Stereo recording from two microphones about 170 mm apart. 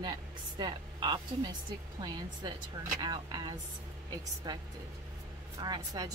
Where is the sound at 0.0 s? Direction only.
25° right (ahead or behind).